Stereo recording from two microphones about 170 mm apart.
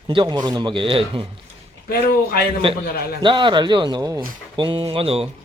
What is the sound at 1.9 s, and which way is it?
Speech, 60° left (ahead or behind).